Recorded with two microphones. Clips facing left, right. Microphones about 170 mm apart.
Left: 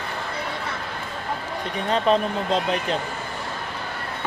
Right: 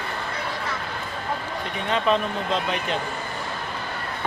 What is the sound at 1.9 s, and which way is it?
Speech, 35° left (ahead or behind).